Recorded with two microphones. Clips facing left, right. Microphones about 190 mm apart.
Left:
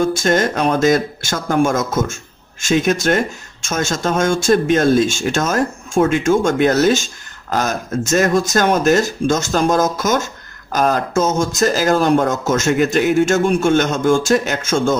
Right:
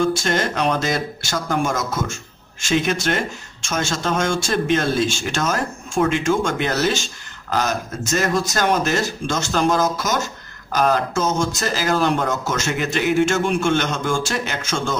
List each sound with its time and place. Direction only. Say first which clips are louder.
0.0 s speech: left 4 dB; 45° left (ahead or behind)